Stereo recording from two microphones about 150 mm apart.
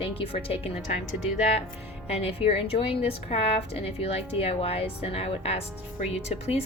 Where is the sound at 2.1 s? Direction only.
40° left (ahead or behind).